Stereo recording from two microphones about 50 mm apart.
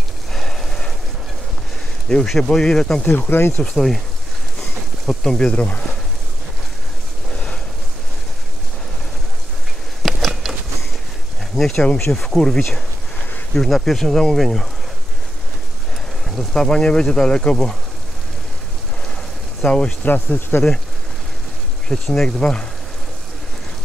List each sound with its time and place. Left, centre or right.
0.3 s a sound: centre
2.0 s speech: centre
3.1 s speech: left
3.7 s speech: centre
5.0 s speech: centre
5.5 s speech: left
7.2 s a sound: centre
10.0 s a sound: centre
11.5 s speech: centre
16.3 s speech: centre
19.6 s speech: centre
20.1 s speech: left
21.8 s speech: centre
22.4 s speech: centre